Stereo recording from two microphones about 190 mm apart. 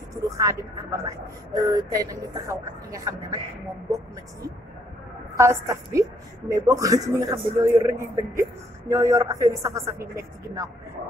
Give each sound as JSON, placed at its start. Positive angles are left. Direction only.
{"t": 0.1, "sound": "a woman's voice", "side_deg": -15}
{"t": 5.4, "sound": "a woman's voice", "side_deg": -15}